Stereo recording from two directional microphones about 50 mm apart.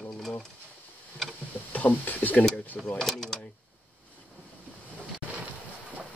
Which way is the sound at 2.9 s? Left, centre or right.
Centre.